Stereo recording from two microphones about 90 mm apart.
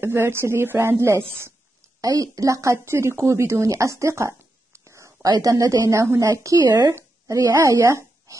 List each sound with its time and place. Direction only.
0.0 s speech: 25° right (ahead or behind)
2.0 s speech: 40° right (ahead or behind)
4.8 s a sound: 35° right (ahead or behind)
5.3 s speech: 40° right (ahead or behind)
6.9 s a sound: 35° right (ahead or behind)
7.5 s speech: 30° right (ahead or behind)